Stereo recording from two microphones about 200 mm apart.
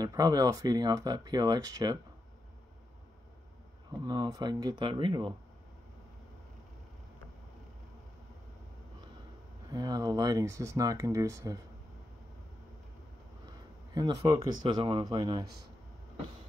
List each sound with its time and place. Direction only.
0.0 s speech: 20° right (ahead or behind)
4.0 s speech: 20° right (ahead or behind)
9.7 s speech: 20° right (ahead or behind)
13.9 s speech: 20° right (ahead or behind)